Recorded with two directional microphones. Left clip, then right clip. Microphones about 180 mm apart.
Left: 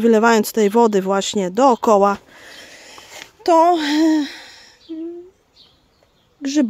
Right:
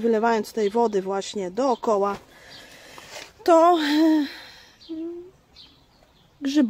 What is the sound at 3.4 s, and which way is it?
Speech, 20° left (ahead or behind).